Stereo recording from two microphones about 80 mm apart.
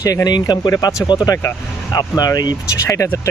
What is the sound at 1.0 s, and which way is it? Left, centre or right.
Speech, left.